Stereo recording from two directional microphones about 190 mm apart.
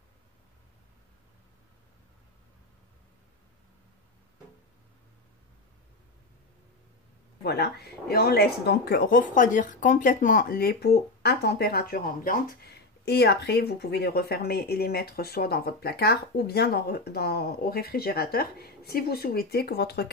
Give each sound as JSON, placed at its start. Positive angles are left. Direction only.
{"t": 7.4, "sound": "speech", "side_deg": 55}